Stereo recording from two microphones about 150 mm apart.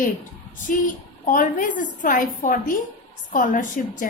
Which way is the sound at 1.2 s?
60° left (ahead or behind).